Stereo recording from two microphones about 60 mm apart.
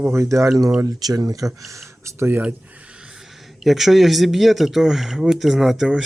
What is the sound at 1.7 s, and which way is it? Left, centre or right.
Speech, right.